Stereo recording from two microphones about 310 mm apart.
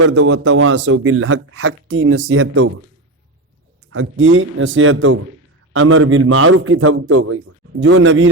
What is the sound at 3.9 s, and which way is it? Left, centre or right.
A man's voice, right.